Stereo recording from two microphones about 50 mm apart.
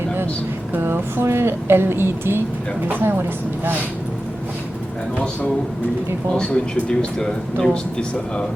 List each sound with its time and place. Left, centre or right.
0.8 s speech: right
6.3 s speech: centre